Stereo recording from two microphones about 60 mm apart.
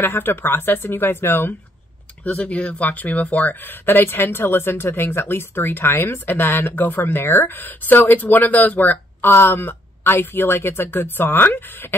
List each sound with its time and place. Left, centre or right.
0.0 s speech: left
2.2 s speech: left